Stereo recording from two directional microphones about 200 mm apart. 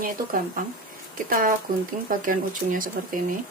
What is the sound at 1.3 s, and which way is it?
Speech, 45° right (ahead or behind).